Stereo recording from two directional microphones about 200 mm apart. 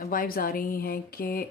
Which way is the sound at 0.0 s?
45° left (ahead or behind).